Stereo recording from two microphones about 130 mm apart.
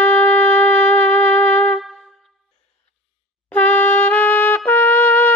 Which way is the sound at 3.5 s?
10° left (ahead or behind).